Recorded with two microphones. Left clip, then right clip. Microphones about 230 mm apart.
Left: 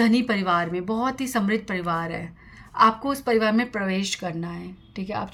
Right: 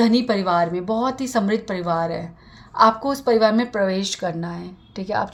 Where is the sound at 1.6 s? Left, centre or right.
Left.